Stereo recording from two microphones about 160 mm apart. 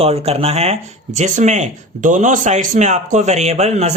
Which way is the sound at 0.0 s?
40° right (ahead or behind).